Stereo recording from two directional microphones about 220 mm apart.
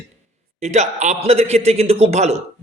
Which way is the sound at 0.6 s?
30° right (ahead or behind).